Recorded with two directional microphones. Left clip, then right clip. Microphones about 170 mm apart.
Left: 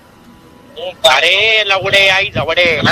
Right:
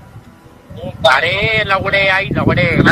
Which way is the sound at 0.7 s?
30° left (ahead or behind).